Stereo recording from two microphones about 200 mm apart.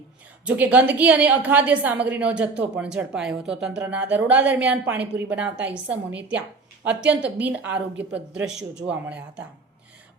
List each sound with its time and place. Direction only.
0.4 s a woman's voice: 5° right (ahead or behind)